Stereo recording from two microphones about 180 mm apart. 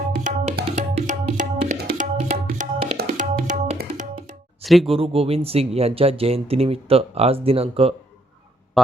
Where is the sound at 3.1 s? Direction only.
45° right (ahead or behind).